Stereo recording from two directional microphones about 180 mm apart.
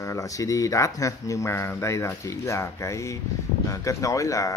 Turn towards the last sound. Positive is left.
turn(degrees=15)  # may be behind; listen again after turning